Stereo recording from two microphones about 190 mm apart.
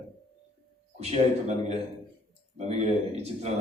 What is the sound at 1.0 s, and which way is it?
Speech, 35° right (ahead or behind).